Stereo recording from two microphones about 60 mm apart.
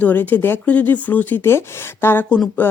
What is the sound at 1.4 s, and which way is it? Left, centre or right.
Speech, left.